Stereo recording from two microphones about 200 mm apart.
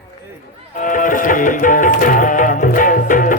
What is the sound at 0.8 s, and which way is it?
A man's voice, 40° left (ahead or behind).